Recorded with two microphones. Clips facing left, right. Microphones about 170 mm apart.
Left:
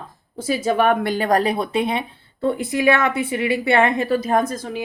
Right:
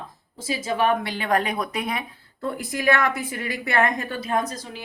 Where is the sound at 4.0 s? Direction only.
40° left (ahead or behind).